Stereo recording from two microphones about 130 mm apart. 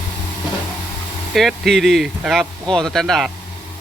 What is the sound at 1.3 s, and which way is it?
Speech, centre (ahead or behind).